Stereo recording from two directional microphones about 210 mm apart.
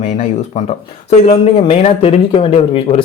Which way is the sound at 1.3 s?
30° left (ahead or behind).